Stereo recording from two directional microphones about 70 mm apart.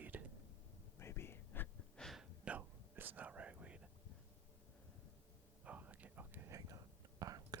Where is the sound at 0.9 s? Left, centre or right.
Left.